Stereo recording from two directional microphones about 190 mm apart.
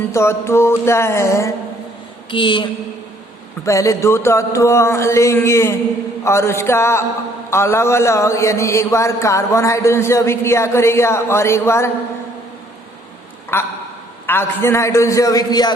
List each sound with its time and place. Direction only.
0.1 s a man's voice: 15° left (ahead or behind)
2.3 s a woman's voice: 25° left (ahead or behind)
3.7 s a man's voice: 15° left (ahead or behind)
13.5 s a man's voice: 10° left (ahead or behind)